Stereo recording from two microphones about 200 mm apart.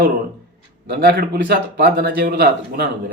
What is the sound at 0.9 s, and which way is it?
A man's voice, 50° right (ahead or behind).